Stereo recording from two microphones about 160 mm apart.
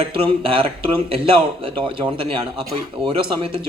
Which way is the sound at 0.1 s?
35° right (ahead or behind).